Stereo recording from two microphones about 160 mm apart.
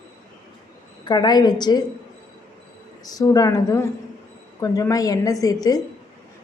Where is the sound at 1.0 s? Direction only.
25° left (ahead or behind).